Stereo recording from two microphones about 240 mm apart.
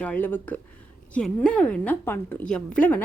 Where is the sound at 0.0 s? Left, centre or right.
Centre.